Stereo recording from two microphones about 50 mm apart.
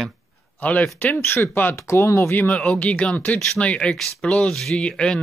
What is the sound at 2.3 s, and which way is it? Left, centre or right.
Speech, left.